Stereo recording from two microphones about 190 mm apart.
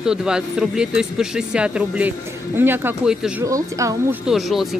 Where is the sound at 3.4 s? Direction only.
15° right (ahead or behind).